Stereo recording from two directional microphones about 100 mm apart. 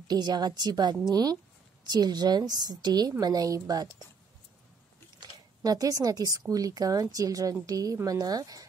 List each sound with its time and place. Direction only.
0.1 s a woman's voice: 45° right (ahead or behind)
5.2 s a woman's voice: 40° right (ahead or behind)